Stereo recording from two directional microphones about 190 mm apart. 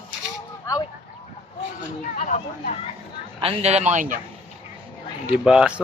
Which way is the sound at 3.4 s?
30° right (ahead or behind).